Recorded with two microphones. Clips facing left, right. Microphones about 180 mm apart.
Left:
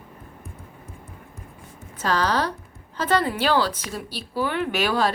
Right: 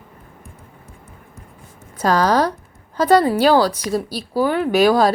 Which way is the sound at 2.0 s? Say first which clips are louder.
Right 7 dB; 45° right (ahead or behind).